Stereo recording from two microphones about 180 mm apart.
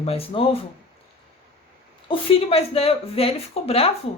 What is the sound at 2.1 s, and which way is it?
Speech, 30° left (ahead or behind).